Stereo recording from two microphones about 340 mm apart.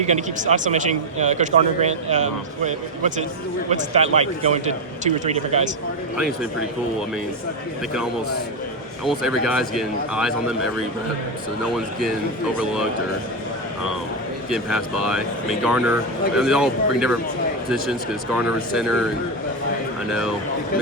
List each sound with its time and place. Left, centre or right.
0.0 s speech: right
9.0 s speech: centre
14.5 s speech: centre